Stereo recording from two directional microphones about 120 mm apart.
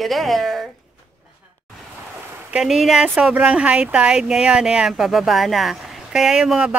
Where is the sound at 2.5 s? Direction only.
5° right (ahead or behind).